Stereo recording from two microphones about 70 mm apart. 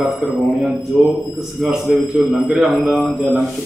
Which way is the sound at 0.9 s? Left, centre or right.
Right.